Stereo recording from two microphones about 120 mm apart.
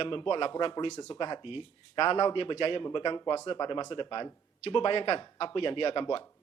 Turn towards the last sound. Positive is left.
turn(degrees=50)  # may be behind; listen again after turning